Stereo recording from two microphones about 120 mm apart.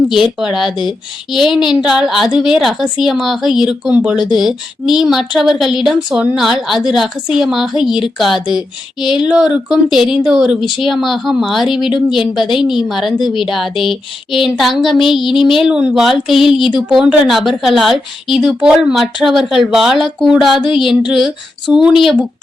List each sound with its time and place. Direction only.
0.1 s speech: 5° right (ahead or behind)